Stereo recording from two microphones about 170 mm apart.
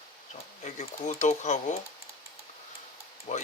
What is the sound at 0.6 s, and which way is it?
Speech, 45° left (ahead or behind).